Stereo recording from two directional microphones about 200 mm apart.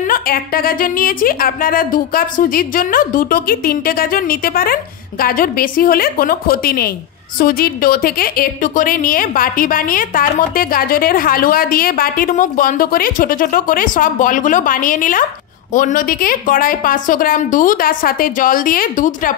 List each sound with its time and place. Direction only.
0.1 s a woman's voice: 45° left (ahead or behind)